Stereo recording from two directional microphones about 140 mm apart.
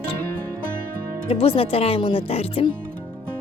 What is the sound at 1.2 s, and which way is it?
Speech, 40° left (ahead or behind).